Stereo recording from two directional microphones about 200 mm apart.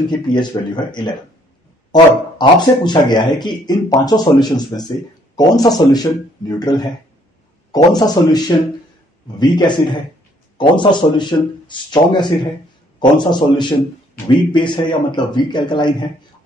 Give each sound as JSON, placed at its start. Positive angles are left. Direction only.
{"t": 0.1, "sound": "speech", "side_deg": 20}